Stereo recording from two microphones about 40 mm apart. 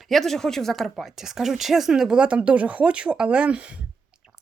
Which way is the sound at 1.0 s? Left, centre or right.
Centre.